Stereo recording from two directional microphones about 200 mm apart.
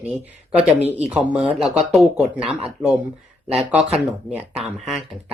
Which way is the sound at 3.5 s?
Centre (ahead or behind).